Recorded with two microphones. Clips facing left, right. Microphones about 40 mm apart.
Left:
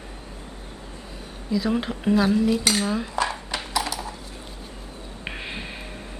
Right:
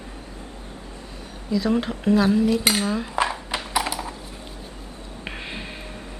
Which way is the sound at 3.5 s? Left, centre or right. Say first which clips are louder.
Right 2 dB; centre.